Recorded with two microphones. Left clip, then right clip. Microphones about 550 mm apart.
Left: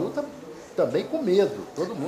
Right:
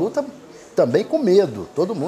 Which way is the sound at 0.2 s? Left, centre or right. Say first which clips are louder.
Right 7 dB; right.